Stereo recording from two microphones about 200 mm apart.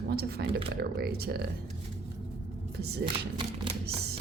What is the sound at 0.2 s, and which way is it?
Speech, 50° right (ahead or behind).